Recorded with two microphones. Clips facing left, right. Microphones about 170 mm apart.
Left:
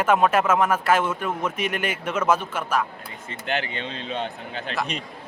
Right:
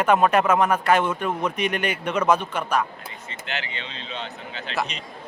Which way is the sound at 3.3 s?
50° left (ahead or behind).